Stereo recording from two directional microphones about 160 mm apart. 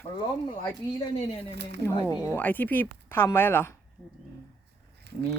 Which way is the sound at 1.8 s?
20° left (ahead or behind).